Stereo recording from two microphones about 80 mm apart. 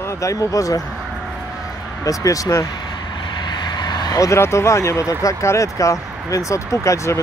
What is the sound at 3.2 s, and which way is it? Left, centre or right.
Vehicle, left.